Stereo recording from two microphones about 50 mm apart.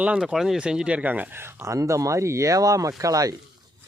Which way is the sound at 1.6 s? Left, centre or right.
Right.